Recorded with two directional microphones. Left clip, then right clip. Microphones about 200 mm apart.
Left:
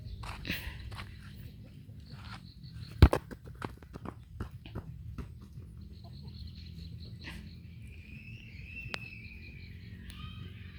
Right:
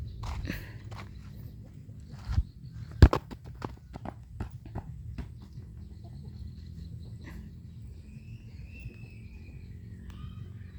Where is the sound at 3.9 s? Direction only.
35° right (ahead or behind).